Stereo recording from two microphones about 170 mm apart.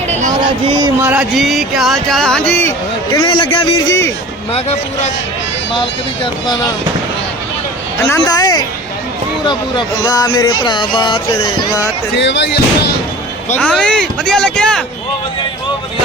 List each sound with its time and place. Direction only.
0.1 s a sound: 45° right (ahead or behind)
0.7 s speech: 25° right (ahead or behind)
1.0 s speech: 10° right (ahead or behind); by 3.2 s 15° left (ahead or behind)
3.2 s speech: 30° left (ahead or behind)
4.5 s speech: 40° left (ahead or behind)
8.2 s speech: 20° left (ahead or behind)
12.1 s speech: 90° left
13.6 s speech: 5° left (ahead or behind)